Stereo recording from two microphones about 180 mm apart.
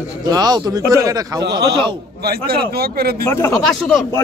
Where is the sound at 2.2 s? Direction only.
60° right (ahead or behind).